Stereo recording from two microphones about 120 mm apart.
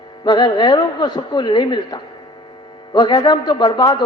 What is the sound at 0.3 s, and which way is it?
A man's voice, 35° left (ahead or behind).